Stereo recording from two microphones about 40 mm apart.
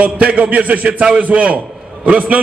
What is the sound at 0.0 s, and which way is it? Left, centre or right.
A man's voice, right.